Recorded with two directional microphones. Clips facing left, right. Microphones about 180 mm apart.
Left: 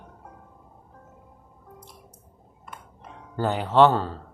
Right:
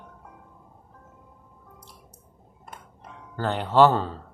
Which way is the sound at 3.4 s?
10° left (ahead or behind).